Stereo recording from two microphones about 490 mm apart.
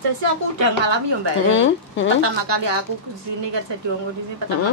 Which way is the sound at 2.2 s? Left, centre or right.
Right.